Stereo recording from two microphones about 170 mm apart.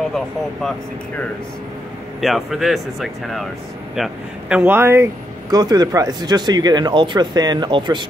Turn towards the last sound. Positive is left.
turn(degrees=-25)  # may be behind; listen again after turning